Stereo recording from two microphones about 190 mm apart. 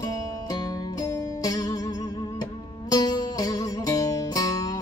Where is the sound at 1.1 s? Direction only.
20° left (ahead or behind).